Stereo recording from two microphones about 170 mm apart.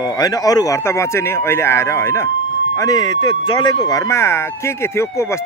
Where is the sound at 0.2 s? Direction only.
20° left (ahead or behind).